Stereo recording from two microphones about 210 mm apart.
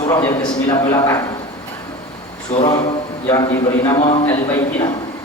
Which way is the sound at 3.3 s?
15° left (ahead or behind).